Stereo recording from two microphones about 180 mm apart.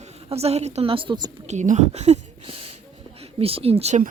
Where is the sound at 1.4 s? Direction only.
40° right (ahead or behind).